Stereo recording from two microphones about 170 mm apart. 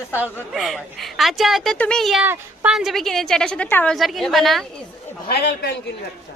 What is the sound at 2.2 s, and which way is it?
Speech, 10° right (ahead or behind).